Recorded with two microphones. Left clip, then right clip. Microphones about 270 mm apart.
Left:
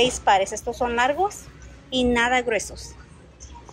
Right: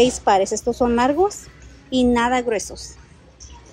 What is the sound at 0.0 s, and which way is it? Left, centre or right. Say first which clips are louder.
A woman's voice: right 3 dB; centre.